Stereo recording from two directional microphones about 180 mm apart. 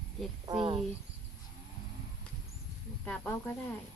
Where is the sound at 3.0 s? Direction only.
10° left (ahead or behind).